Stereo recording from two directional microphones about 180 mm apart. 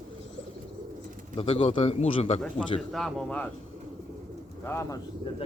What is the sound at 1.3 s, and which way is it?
Speech, 30° left (ahead or behind).